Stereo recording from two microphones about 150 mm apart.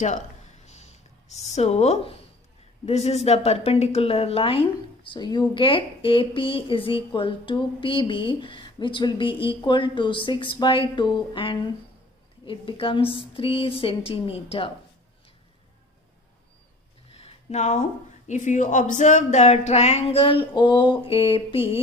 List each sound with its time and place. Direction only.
0.7 s a sound: 50° left (ahead or behind)
2.8 s a woman's voice: 45° left (ahead or behind)
17.1 s speech: 45° left (ahead or behind)